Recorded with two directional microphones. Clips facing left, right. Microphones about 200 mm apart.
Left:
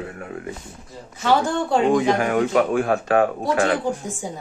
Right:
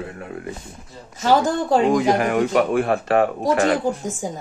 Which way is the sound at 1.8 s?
5° right (ahead or behind).